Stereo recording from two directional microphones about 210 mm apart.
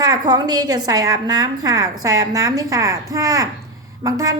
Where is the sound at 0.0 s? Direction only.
20° right (ahead or behind).